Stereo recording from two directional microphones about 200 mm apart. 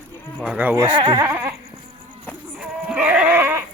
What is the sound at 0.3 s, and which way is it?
Speech, 5° right (ahead or behind).